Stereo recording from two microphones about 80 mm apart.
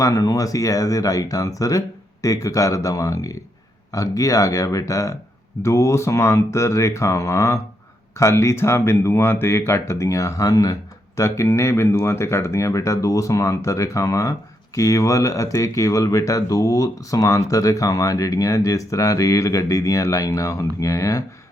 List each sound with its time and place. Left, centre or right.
0.0 s speech: left